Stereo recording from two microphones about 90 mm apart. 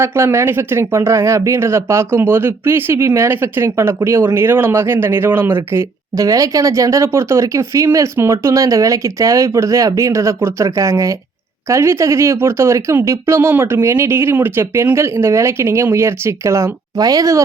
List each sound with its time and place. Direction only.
0.0 s speech: 25° right (ahead or behind)
6.1 s speech: 40° right (ahead or behind)